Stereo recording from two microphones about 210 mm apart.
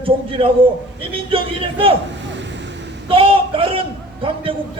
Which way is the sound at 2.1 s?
60° right (ahead or behind).